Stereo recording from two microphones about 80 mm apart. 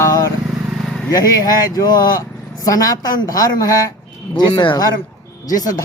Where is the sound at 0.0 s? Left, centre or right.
Left.